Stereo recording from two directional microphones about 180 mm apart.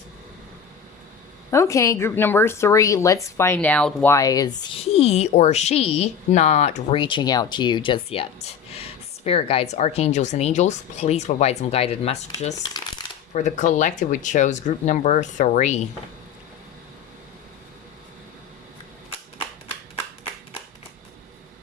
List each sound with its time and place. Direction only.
1.5 s speech: 15° left (ahead or behind)
4.1 s speech: 20° left (ahead or behind)
4.8 s speech: 35° left (ahead or behind)
7.0 s speech: 25° left (ahead or behind)
12.6 s shuffling cards: 25° left (ahead or behind)
13.3 s speech: 40° left (ahead or behind)